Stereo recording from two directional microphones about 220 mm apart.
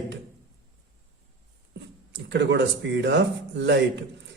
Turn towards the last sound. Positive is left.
turn(degrees=-50)  # may be behind; listen again after turning